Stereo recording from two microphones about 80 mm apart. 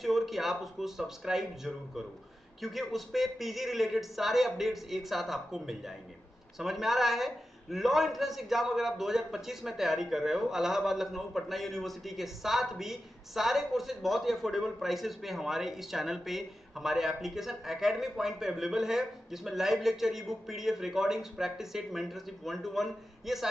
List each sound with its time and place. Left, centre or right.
0.0 s a man's voice: centre